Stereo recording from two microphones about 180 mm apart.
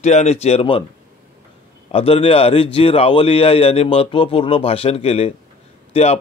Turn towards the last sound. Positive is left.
turn(degrees=35)  # may be behind; listen again after turning